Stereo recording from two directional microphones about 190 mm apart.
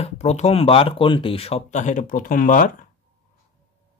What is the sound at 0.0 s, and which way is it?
Speech, 35° left (ahead or behind).